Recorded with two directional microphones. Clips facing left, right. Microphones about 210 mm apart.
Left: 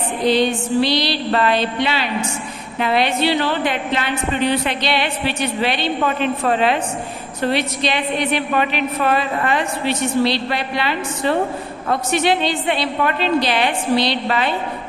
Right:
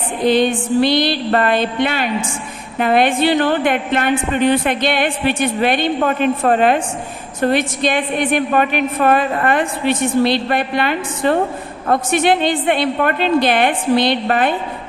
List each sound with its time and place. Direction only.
0.2 s a woman's voice: 50° right (ahead or behind)